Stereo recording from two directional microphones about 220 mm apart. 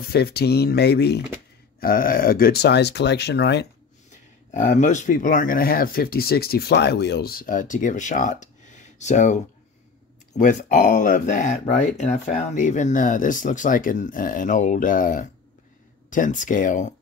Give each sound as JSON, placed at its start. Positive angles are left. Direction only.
{"t": 0.1, "sound": "speech", "side_deg": 45}
{"t": 4.5, "sound": "speech", "side_deg": 35}